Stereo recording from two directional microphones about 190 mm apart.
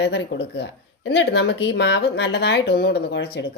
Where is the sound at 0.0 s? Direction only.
70° left (ahead or behind).